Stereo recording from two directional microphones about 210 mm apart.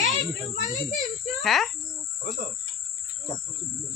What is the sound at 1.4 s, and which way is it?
Speech, centre (ahead or behind).